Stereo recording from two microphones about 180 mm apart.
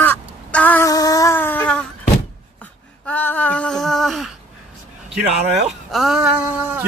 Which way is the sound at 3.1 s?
10° left (ahead or behind).